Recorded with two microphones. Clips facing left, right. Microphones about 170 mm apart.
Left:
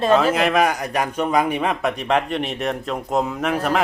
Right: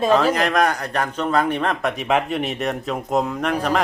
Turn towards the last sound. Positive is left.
turn(degrees=5)  # may be behind; listen again after turning